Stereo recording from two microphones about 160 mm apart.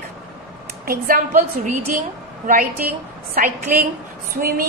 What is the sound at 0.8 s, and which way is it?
Speech, 65° right (ahead or behind).